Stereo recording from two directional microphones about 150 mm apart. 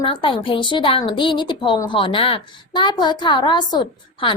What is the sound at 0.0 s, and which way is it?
A woman's voice, 35° left (ahead or behind).